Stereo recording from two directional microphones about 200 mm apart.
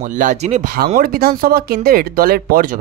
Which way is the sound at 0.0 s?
40° right (ahead or behind).